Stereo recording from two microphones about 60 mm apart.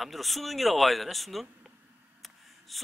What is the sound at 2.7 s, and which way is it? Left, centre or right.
Speech, centre.